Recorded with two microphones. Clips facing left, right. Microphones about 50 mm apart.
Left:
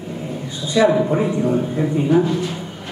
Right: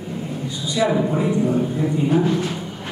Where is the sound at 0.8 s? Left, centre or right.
Left.